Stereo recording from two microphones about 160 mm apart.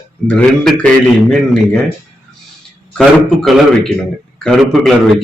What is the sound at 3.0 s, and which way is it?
A man's voice, centre (ahead or behind).